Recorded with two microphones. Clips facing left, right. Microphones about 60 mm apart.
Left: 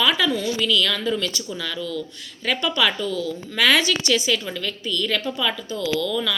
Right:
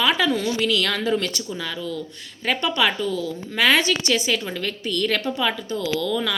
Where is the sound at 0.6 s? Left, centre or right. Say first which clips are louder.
Even; right.